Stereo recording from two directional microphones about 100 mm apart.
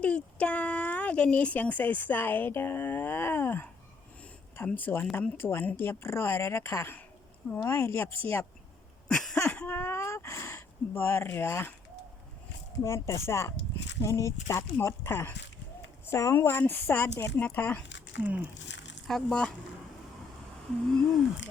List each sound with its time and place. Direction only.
0.0 s speech: 15° left (ahead or behind)
9.0 s a sound: 5° left (ahead or behind)
9.5 s speech: 20° left (ahead or behind)
12.8 s speech: 30° left (ahead or behind)
18.2 s speech: 15° right (ahead or behind)
19.0 s speech: 5° left (ahead or behind)